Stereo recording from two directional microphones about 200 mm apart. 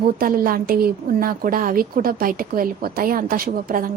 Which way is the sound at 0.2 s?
45° right (ahead or behind).